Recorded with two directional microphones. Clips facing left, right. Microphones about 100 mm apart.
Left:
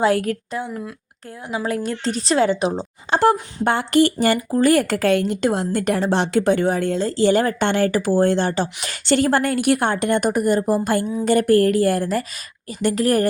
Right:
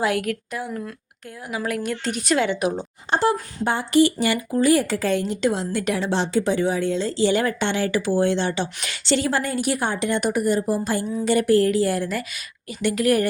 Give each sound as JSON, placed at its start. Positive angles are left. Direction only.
{"t": 0.0, "sound": "a woman's voice", "side_deg": 35}
{"t": 3.6, "sound": "a woman's voice", "side_deg": 60}